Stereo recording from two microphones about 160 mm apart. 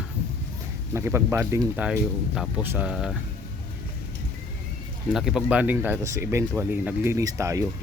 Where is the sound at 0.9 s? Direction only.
15° right (ahead or behind).